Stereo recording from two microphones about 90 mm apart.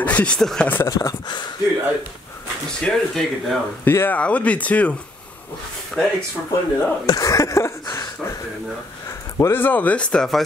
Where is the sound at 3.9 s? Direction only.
20° left (ahead or behind); by 6.1 s 5° left (ahead or behind).